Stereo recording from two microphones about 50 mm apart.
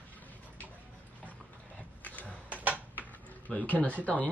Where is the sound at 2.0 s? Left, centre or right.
Left.